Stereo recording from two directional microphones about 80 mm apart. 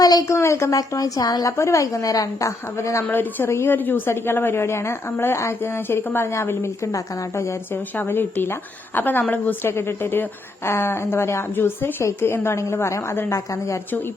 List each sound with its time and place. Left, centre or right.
0.0 s a sound: left
0.3 s a woman's voice: left
0.8 s a woman's voice: left
1.5 s a woman's voice: left
3.1 s a woman's voice: left